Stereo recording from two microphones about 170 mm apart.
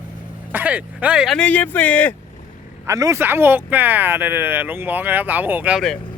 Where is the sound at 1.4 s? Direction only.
10° left (ahead or behind).